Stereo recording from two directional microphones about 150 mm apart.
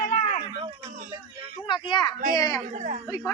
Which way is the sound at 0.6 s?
35° right (ahead or behind).